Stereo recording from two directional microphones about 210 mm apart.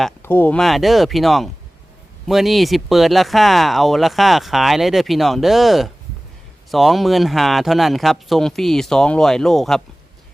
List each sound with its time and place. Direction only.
0.2 s speech: 10° left (ahead or behind)